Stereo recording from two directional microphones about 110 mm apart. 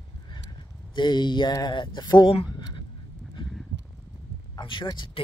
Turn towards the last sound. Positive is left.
turn(degrees=45)  # may be behind; listen again after turning